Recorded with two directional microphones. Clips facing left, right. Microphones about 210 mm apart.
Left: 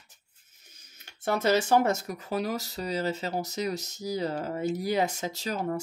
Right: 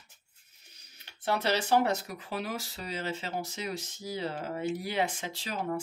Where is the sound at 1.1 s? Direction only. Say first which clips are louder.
Left 5 dB; 45° left (ahead or behind).